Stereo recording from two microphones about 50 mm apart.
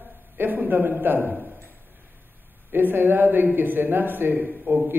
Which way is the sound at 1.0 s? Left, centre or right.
Right.